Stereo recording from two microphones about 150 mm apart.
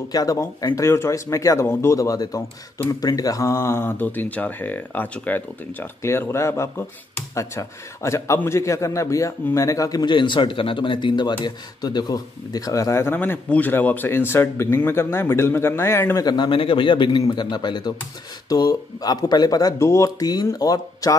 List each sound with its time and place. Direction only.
0.1 s a man's voice: 25° left (ahead or behind)
16.3 s a man's voice: 30° left (ahead or behind)